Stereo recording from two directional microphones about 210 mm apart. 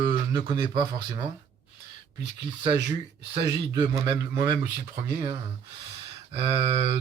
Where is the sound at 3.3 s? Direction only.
20° right (ahead or behind).